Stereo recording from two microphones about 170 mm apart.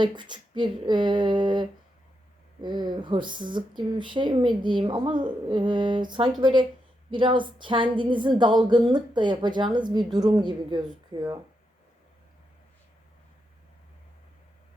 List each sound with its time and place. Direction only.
0.0 s speech: 25° right (ahead or behind)